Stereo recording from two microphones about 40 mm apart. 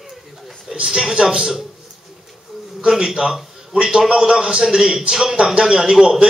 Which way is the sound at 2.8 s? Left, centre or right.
Right.